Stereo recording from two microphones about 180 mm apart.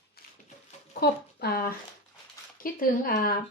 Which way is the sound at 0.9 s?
60° left (ahead or behind).